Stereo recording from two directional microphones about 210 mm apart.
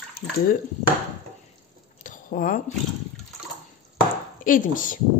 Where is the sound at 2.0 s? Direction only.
40° left (ahead or behind).